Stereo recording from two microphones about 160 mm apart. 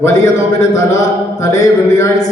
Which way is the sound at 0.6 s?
20° left (ahead or behind).